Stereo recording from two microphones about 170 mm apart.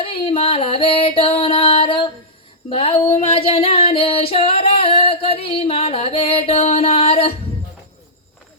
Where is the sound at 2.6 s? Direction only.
35° left (ahead or behind).